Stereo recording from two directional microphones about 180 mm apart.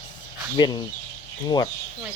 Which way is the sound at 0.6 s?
25° left (ahead or behind).